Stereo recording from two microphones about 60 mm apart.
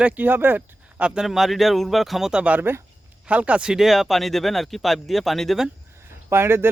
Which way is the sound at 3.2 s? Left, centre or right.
Right.